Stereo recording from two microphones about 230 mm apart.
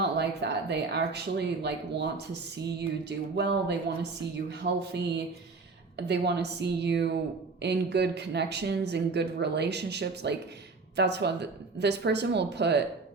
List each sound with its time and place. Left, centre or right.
0.0 s speech: right